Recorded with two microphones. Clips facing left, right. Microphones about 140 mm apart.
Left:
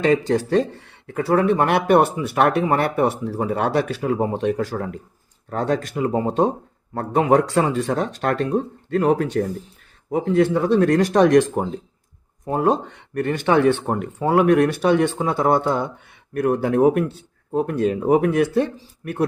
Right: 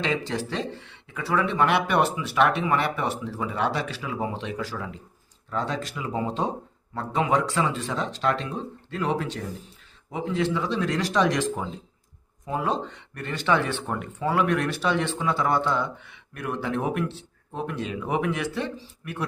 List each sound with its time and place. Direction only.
0.0 s speech: 50° left (ahead or behind)